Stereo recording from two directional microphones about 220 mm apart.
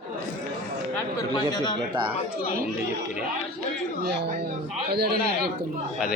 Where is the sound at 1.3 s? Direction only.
20° left (ahead or behind).